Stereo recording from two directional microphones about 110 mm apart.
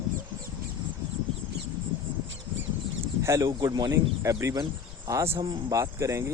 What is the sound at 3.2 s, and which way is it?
Speech, 25° right (ahead or behind).